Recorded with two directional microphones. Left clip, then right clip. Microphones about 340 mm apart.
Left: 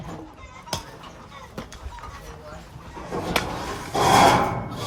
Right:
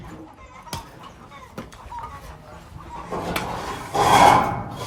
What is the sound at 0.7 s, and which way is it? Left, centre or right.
Chicken, left.